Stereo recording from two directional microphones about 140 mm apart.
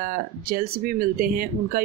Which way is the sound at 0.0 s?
85° right.